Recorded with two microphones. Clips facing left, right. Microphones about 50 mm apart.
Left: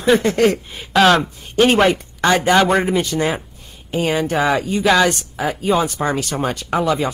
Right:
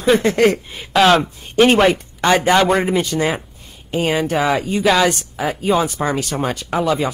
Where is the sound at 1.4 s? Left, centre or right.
Right.